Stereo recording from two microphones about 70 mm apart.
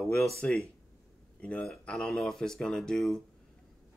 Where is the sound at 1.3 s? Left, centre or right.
Centre.